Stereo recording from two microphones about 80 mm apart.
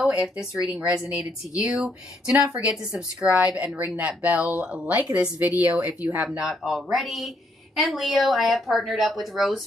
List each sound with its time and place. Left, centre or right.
0.0 s speech: centre
6.3 s speech: centre